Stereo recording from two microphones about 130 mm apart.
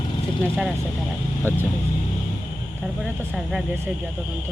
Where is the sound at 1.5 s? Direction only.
15° right (ahead or behind).